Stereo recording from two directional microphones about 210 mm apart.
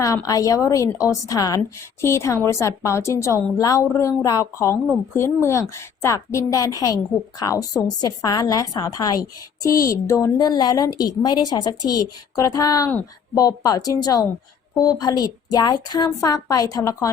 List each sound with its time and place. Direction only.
0.0 s a woman's voice: 15° left (ahead or behind)